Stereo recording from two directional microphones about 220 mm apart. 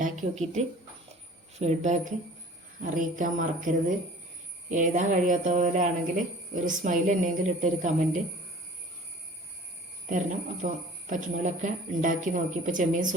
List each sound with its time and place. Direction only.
0.0 s speech: 35° right (ahead or behind)
10.1 s speech: 35° right (ahead or behind)